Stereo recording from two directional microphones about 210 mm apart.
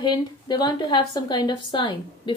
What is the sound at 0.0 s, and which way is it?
A woman's voice, 20° left (ahead or behind).